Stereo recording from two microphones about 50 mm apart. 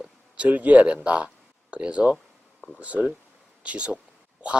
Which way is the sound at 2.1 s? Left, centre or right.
Centre.